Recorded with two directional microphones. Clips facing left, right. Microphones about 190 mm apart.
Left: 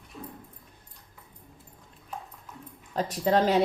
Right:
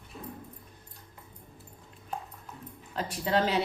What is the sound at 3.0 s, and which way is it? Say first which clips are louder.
Speech: left 4 dB; 45° left (ahead or behind).